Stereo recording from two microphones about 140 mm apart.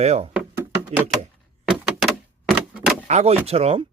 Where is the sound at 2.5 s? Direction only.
Centre (ahead or behind).